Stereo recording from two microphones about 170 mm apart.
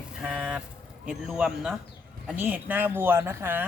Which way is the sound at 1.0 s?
5° right (ahead or behind).